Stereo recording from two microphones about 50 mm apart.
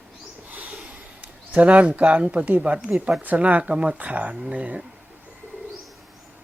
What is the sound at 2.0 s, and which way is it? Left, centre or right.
Speech, right.